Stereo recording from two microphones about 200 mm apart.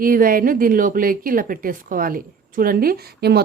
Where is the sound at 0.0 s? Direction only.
45° right (ahead or behind).